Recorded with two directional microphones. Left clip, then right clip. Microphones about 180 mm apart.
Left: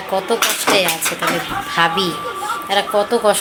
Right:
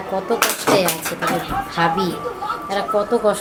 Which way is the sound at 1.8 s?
Centre (ahead or behind).